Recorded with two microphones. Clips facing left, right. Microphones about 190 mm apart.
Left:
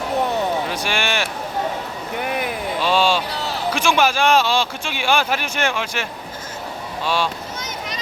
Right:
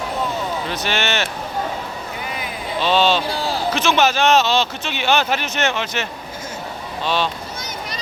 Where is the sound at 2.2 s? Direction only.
60° left (ahead or behind).